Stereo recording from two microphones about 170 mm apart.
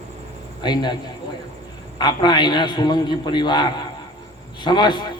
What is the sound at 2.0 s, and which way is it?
A man's voice, 25° left (ahead or behind).